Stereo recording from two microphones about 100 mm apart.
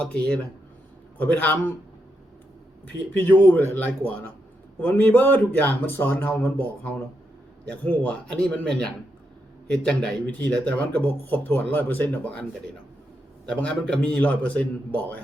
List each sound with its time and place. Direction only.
0.0 s speech: 10° left (ahead or behind)
3.2 s a man's voice: 20° left (ahead or behind)
9.8 s speech: 10° left (ahead or behind)